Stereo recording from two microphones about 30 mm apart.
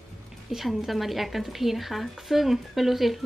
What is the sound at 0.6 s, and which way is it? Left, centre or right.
Speech, centre.